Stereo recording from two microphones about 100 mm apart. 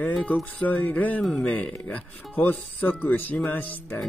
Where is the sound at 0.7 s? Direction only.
15° left (ahead or behind).